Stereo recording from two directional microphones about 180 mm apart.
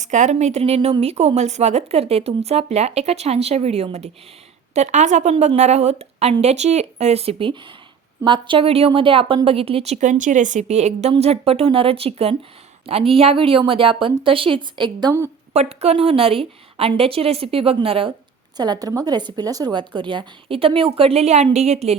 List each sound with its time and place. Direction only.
0.0 s a woman's voice: 40° right (ahead or behind)